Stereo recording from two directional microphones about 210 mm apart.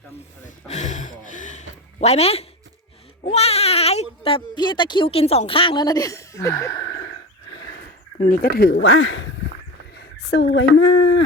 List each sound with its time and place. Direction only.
0.4 s music: 35° left (ahead or behind)
3.2 s speech: 30° left (ahead or behind); by 6.7 s 15° left (ahead or behind)
8.2 s speech: 45° left (ahead or behind); by 9.3 s 65° left (ahead or behind)
9.9 s a sound: 55° left (ahead or behind)
10.5 s speech: 60° left (ahead or behind)